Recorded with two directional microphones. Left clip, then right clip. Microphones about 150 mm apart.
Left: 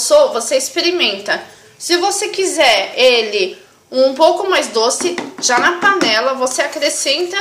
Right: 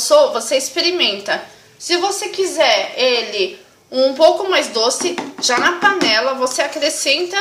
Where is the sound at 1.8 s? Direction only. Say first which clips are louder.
Left 3 dB; 15° left (ahead or behind); by 7.4 s centre (ahead or behind).